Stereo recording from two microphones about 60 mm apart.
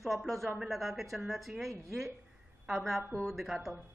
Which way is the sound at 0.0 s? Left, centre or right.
Centre.